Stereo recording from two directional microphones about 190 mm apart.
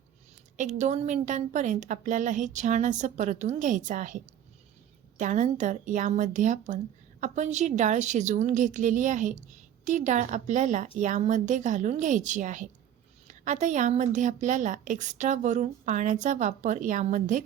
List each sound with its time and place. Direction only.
0.5 s a woman's voice: 40° right (ahead or behind)